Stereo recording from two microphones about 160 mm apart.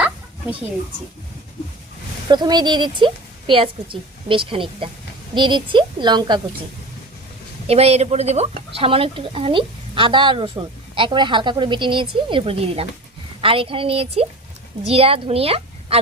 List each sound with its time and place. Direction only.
2.3 s a woman's voice: 25° right (ahead or behind)
7.7 s a woman's voice: 40° right (ahead or behind)